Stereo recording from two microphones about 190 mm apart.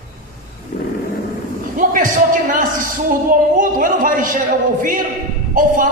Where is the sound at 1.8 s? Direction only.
45° right (ahead or behind).